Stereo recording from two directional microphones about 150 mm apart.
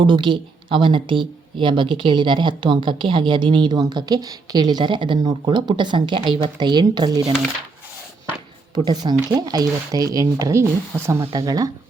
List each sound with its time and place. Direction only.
0.0 s speech: 35° right (ahead or behind)
8.7 s speech: 30° right (ahead or behind)